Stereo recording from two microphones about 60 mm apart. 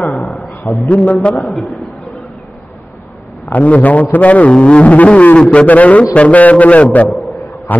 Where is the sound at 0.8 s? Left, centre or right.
Left.